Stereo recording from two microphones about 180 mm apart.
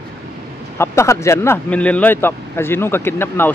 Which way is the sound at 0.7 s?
15° left (ahead or behind).